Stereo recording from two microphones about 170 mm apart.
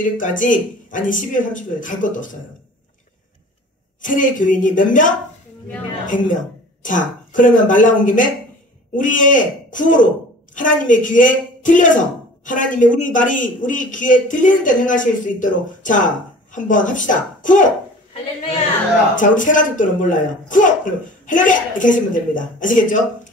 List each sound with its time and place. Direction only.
0.0 s a man's voice: 50° left (ahead or behind)
4.0 s a man's voice: 50° left (ahead or behind)
19.1 s a man's voice: 50° left (ahead or behind)